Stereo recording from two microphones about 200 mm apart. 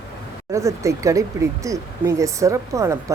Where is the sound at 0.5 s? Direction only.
15° right (ahead or behind).